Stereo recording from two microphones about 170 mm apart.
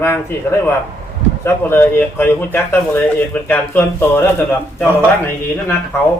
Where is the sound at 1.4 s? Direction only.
15° left (ahead or behind).